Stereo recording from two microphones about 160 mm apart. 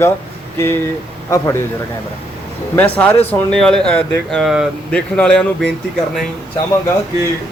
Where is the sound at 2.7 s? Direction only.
10° left (ahead or behind).